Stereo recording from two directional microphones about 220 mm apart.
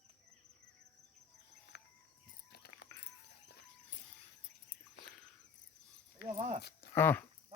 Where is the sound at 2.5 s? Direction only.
45° left (ahead or behind).